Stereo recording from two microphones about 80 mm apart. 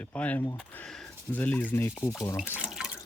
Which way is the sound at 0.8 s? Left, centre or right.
Centre.